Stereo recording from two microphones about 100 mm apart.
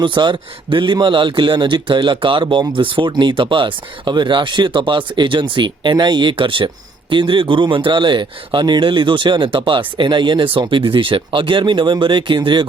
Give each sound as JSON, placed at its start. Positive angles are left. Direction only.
{"t": 0.0, "sound": "speech", "side_deg": -50}